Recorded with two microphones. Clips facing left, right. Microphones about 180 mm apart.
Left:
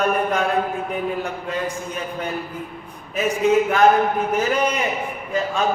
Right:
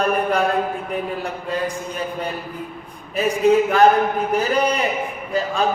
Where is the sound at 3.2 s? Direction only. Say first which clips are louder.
Right 1 dB; 35° right (ahead or behind).